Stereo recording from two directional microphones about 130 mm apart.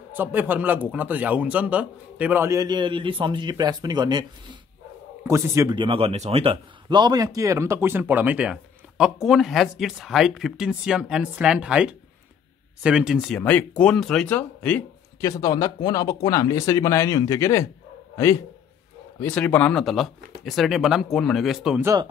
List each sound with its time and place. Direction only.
0.1 s a man's voice: 15° right (ahead or behind); by 4.6 s 35° right (ahead or behind)
5.2 s a man's voice: 20° right (ahead or behind)
5.8 s a man's voice: 45° right (ahead or behind); by 13.4 s 5° right (ahead or behind)
13.4 s speech: 10° left (ahead or behind)
15.1 s speech: 25° left (ahead or behind)
19.3 s speech: 10° left (ahead or behind)